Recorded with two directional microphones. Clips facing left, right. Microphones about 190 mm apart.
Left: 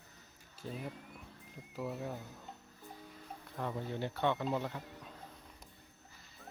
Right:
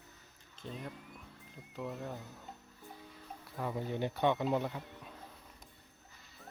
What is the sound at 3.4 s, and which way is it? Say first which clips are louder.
Speech: right 2 dB; 5° right (ahead or behind).